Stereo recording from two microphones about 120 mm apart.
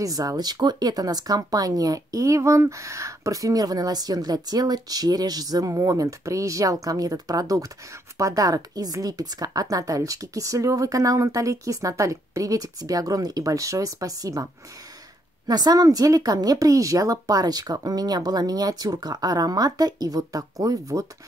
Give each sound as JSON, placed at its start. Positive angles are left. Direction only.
{"t": 0.0, "sound": "a woman's voice", "side_deg": -30}